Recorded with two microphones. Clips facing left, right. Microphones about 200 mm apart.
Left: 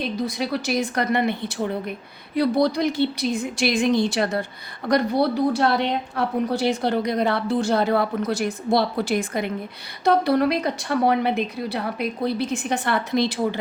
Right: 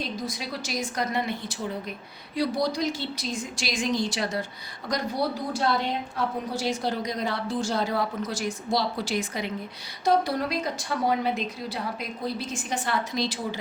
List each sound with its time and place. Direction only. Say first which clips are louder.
0.2 s a woman's voice: left 8 dB; 60° left (ahead or behind)